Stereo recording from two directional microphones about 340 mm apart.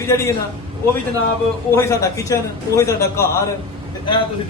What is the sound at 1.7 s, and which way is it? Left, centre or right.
A man's voice, centre.